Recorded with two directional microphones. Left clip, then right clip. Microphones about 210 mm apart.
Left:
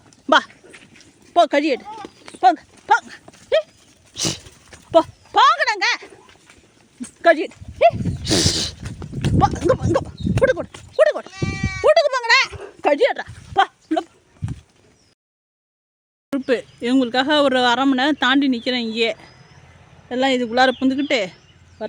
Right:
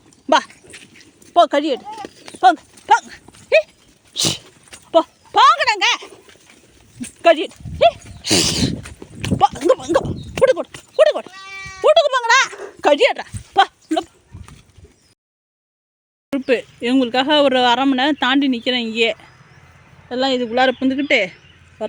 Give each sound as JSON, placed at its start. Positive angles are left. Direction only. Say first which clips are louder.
{"t": 0.3, "sound": "speech", "louder": "even", "side_deg": 5}
{"t": 1.8, "sound": "a sound", "louder": "right 3 dB", "side_deg": -15}
{"t": 2.4, "sound": "clip-clop", "louder": "right 2 dB", "side_deg": 0}
{"t": 4.1, "sound": "dog", "louder": "right 5 dB", "side_deg": -10}
{"t": 5.3, "sound": "a sound", "louder": "right 3 dB", "side_deg": -5}
{"t": 7.2, "sound": "dog", "louder": "right 2 dB", "side_deg": 0}
{"t": 8.4, "sound": "speech", "louder": "right 1 dB", "side_deg": 10}
{"t": 9.6, "sound": "speech", "louder": "right 3 dB", "side_deg": -10}
{"t": 10.9, "sound": "sheep", "louder": "right 2 dB", "side_deg": -5}
{"t": 11.5, "sound": "sheep", "louder": "left 2 dB", "side_deg": 50}
{"t": 11.8, "sound": "a sound", "louder": "right 2 dB", "side_deg": 0}
{"t": 13.5, "sound": "dog", "louder": "right 3 dB", "side_deg": -10}
{"t": 16.3, "sound": "speech", "louder": "right 2 dB", "side_deg": 0}
{"t": 20.1, "sound": "speech", "louder": "even", "side_deg": 10}